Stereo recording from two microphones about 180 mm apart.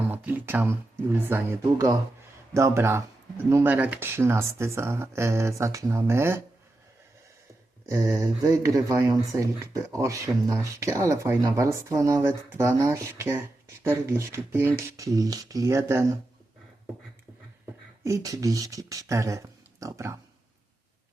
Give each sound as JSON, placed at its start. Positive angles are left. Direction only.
{"t": 0.1, "sound": "speech", "side_deg": -10}
{"t": 7.9, "sound": "speech", "side_deg": -15}
{"t": 18.0, "sound": "speech", "side_deg": -20}